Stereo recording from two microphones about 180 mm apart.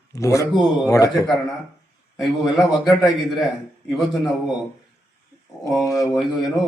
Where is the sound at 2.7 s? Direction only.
25° left (ahead or behind).